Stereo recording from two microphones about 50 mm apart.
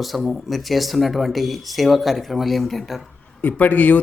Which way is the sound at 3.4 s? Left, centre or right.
Left.